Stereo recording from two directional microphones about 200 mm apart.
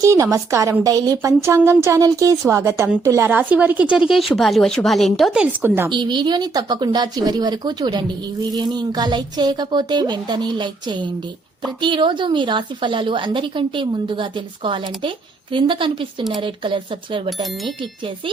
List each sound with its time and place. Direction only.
0.0 s a woman's voice: 15° right (ahead or behind)
5.9 s speech: 25° right (ahead or behind)
17.2 s speech: centre (ahead or behind)